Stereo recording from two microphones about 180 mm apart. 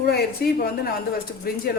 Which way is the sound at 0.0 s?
60° left (ahead or behind).